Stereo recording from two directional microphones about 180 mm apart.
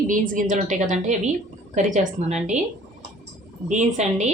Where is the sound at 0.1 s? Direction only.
45° right (ahead or behind).